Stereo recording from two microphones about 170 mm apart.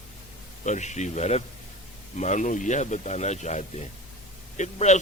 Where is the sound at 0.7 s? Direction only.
45° left (ahead or behind).